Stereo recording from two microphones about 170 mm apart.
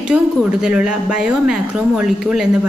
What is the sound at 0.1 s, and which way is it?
A woman's voice, 5° right (ahead or behind).